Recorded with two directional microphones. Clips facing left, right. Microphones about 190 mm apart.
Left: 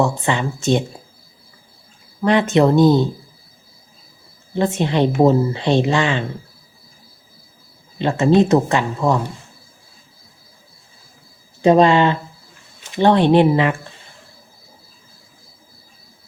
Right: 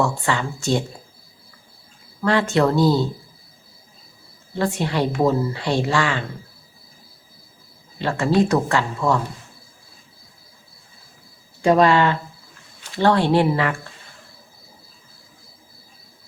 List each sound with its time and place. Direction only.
0.0 s speech: 20° left (ahead or behind)
2.2 s speech: 20° left (ahead or behind)
4.5 s speech: 20° left (ahead or behind)
7.9 s speech: 20° left (ahead or behind)
11.6 s speech: 20° left (ahead or behind)